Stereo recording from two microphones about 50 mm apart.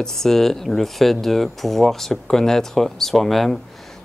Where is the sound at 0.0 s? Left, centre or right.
Centre.